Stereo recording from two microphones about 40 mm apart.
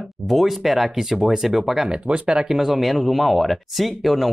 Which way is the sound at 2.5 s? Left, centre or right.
Centre.